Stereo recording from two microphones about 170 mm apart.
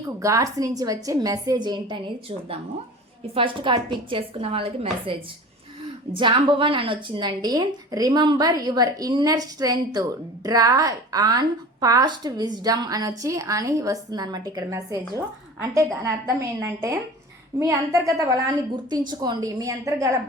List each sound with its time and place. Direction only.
0.2 s a woman's voice: 20° right (ahead or behind)
3.3 s a woman's voice: 30° right (ahead or behind)
6.1 s a woman's voice: 30° right (ahead or behind)